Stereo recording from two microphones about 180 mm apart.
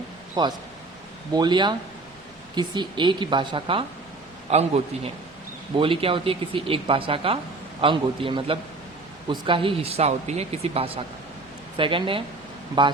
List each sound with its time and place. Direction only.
0.4 s speech: 20° right (ahead or behind)